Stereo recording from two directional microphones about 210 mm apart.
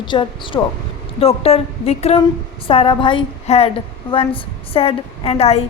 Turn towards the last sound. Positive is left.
turn(degrees=30)  # may be behind; listen again after turning